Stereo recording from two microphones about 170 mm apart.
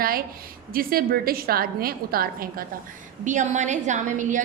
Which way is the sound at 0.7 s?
60° right (ahead or behind).